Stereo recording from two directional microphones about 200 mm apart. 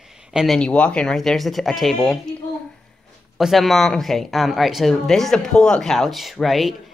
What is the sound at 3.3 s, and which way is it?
Speech, centre (ahead or behind).